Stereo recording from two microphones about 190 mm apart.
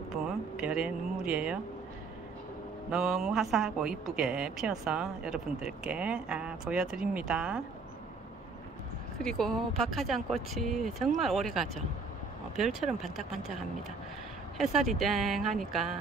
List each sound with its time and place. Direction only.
0.1 s speech: 5° right (ahead or behind)
2.9 s a woman's voice: centre (ahead or behind)
9.2 s a woman's voice: 5° left (ahead or behind)
14.6 s a woman's voice: centre (ahead or behind)